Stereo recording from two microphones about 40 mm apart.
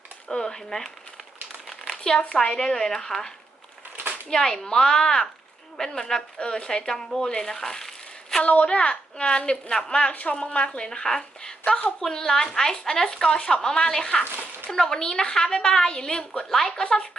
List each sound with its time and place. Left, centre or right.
0.3 s a woman's voice: centre
2.0 s a woman's voice: left; by 8.4 s centre
8.4 s speech: left; by 11.2 s centre
11.2 s a sound: left
11.9 s a woman's voice: centre
16.5 s a woman's voice: centre